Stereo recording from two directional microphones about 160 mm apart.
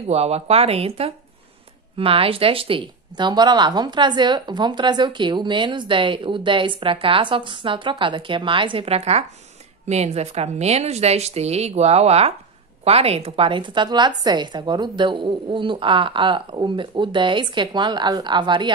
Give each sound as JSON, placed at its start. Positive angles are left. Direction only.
{"t": 0.1, "sound": "a woman's voice", "side_deg": -40}